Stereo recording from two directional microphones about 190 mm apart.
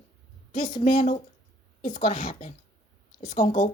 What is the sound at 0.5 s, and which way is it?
Speech, 25° left (ahead or behind).